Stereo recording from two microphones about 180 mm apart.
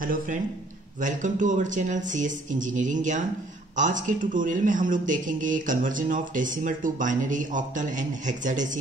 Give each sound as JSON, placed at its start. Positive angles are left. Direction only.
{"t": 0.0, "sound": "a man's voice", "side_deg": -50}